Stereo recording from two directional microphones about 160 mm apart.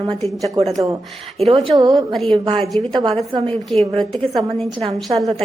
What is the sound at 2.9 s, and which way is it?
A woman's voice, 30° right (ahead or behind).